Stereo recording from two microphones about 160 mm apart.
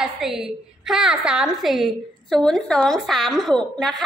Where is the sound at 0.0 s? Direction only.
5° right (ahead or behind).